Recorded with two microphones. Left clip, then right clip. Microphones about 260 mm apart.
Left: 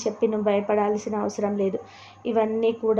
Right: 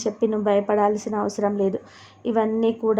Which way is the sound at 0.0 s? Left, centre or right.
Right.